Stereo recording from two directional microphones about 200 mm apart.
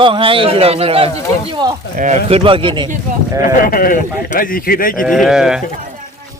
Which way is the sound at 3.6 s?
45° left (ahead or behind).